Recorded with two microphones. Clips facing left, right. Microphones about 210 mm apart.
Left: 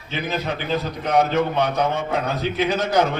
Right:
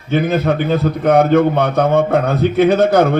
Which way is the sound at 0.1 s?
55° right (ahead or behind).